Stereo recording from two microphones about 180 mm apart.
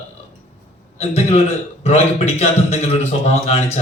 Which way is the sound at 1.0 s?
35° left (ahead or behind).